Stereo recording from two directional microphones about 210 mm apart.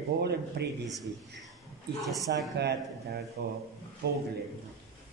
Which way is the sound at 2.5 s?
55° right (ahead or behind).